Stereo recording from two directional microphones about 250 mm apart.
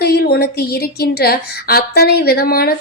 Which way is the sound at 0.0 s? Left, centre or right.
Left.